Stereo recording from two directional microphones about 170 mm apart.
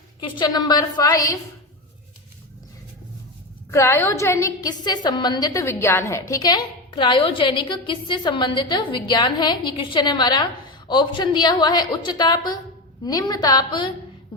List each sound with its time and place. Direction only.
0.2 s a woman's voice: 25° left (ahead or behind)
3.7 s a woman's voice: 15° left (ahead or behind)